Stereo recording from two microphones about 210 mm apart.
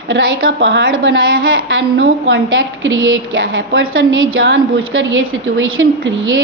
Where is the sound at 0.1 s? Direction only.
65° right (ahead or behind).